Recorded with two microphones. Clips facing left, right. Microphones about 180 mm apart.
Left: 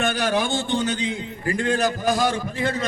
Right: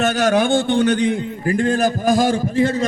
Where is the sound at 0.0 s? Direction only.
45° right (ahead or behind).